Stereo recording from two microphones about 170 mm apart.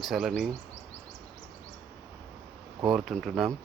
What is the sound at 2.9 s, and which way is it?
Speech, centre (ahead or behind).